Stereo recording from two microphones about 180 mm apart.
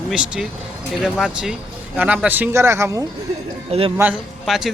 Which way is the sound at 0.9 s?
5° right (ahead or behind).